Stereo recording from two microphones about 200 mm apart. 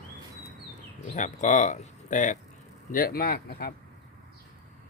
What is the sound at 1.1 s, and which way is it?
Speech, 40° left (ahead or behind).